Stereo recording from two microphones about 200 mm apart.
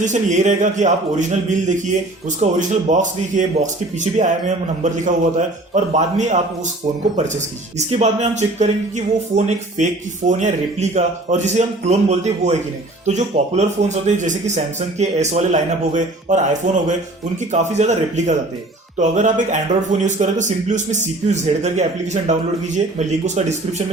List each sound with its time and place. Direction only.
0.0 s speech: 35° right (ahead or behind)
7.9 s speech: 35° right (ahead or behind)